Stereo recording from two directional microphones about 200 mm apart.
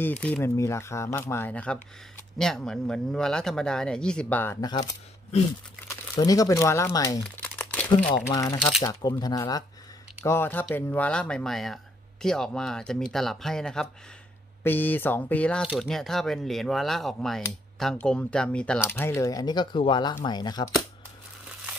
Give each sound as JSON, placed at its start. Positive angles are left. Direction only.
{"t": 0.0, "sound": "speech", "side_deg": 5}
{"t": 5.9, "sound": "speech", "side_deg": 20}
{"t": 7.4, "sound": "crumpling", "side_deg": 5}
{"t": 8.3, "sound": "speech", "side_deg": 20}